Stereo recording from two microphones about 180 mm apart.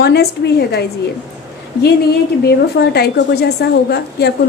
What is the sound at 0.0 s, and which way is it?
Speech, 65° left (ahead or behind).